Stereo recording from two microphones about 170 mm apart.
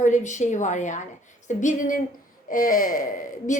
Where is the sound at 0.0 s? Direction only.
45° left (ahead or behind).